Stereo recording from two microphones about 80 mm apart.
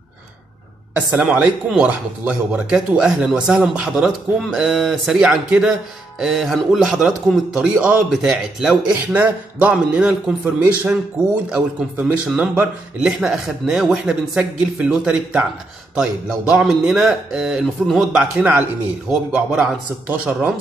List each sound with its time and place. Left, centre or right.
0.9 s a man's voice: right
4.5 s speech: centre
8.9 s a man's voice: right
11.5 s a man's voice: centre
13.2 s speech: centre
18.3 s a man's voice: right
19.0 s speech: centre